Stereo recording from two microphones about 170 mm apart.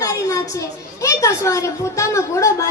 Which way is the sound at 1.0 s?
20° left (ahead or behind).